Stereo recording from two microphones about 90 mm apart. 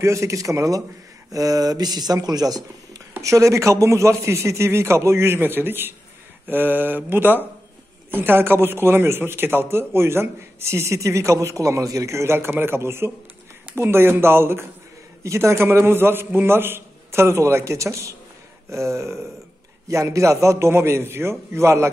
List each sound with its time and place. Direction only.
0.0 s a man's voice: 35° right (ahead or behind)